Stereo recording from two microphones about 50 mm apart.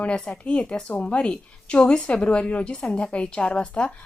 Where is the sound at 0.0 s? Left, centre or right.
Left.